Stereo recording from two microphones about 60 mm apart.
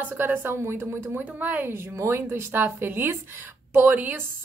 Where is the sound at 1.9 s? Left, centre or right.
Right.